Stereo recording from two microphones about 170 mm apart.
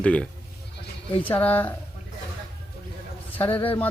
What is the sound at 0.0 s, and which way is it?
Speech, 5° left (ahead or behind).